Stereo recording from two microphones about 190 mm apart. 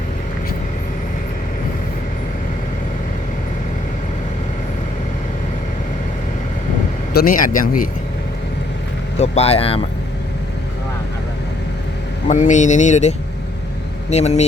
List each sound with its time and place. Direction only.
7.1 s speech: 50° left (ahead or behind)
9.1 s speech: 35° left (ahead or behind)
12.3 s speech: 40° left (ahead or behind)